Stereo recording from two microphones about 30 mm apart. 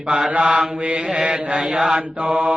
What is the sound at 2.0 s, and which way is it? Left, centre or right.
Mantra, right.